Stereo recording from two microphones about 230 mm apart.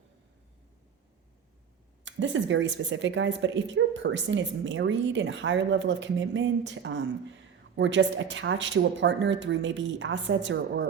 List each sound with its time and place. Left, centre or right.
2.0 s speech: right